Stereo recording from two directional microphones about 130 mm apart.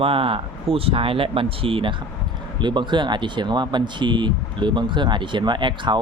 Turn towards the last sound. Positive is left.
turn(degrees=-40)  # may be behind; listen again after turning